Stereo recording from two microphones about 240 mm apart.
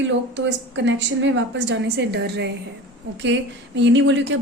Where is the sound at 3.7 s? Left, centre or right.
Right.